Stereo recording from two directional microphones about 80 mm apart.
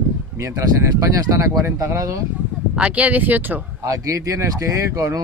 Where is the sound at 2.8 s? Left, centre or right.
Centre.